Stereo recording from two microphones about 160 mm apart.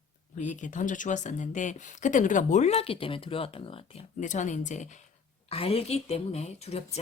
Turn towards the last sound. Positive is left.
turn(degrees=40)  # may be behind; listen again after turning